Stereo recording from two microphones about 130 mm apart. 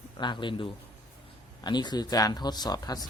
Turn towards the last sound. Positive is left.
turn(degrees=30)  # may be behind; listen again after turning